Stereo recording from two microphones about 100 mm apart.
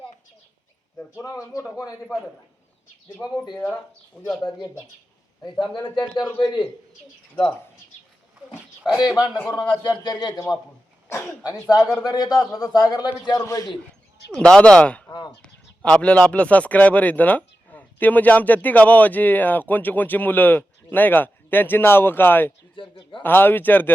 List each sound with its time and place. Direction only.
1.2 s a man's voice: 35° left (ahead or behind)
3.6 s speech: 20° left (ahead or behind)
5.9 s a man's voice: 50° left (ahead or behind)
8.8 s speech: 5° right (ahead or behind)
9.0 s a man's voice: 40° left (ahead or behind)
9.4 s speech: 15° left (ahead or behind)
9.8 s a man's voice: 45° left (ahead or behind)
11.1 s speech: 25° left (ahead or behind)
11.9 s a man's voice: 40° left (ahead or behind)
13.4 s a man's voice: 30° left (ahead or behind)
14.3 s speech: 10° left (ahead or behind)
22.7 s a man's voice: 55° left (ahead or behind)
23.2 s speech: 20° left (ahead or behind)